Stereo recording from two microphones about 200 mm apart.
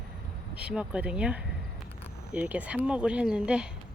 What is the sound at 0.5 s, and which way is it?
Speech, 5° right (ahead or behind).